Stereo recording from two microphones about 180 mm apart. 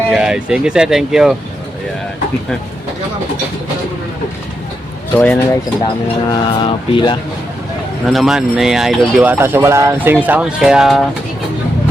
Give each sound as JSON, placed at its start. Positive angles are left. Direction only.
{"t": 0.1, "sound": "speech", "side_deg": -5}
{"t": 5.1, "sound": "speech", "side_deg": 5}
{"t": 6.2, "sound": "mantra", "side_deg": 25}
{"t": 8.0, "sound": "speech", "side_deg": 0}